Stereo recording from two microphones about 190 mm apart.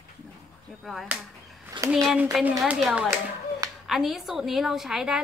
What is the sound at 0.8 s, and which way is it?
Speech, centre (ahead or behind).